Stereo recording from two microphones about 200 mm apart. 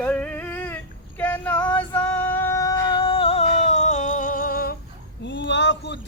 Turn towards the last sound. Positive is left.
turn(degrees=60)  # may be behind; listen again after turning